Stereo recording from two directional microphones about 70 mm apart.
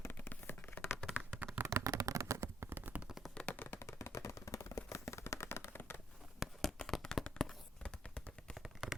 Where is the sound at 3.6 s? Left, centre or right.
Left.